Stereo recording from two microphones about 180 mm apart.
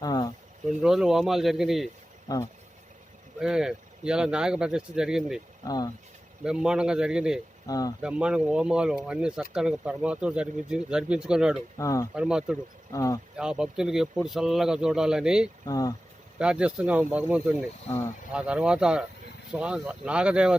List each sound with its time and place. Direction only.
0.0 s a sound: 20° left (ahead or behind)
0.8 s speech: 5° right (ahead or behind)
3.3 s speech: 5° right (ahead or behind)
5.6 s speech: 20° left (ahead or behind)
6.4 s speech: 5° right (ahead or behind)
7.7 s speech: 20° left (ahead or behind)
8.0 s speech: 5° right (ahead or behind)
11.8 s speech: 15° left (ahead or behind)
12.1 s speech: 5° right (ahead or behind)
12.9 s speech: 15° left (ahead or behind)
13.3 s speech: 5° right (ahead or behind)
15.6 s speech: 20° left (ahead or behind)
16.4 s speech: 5° right (ahead or behind)